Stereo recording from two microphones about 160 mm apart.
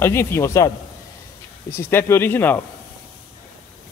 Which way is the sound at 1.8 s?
15° left (ahead or behind).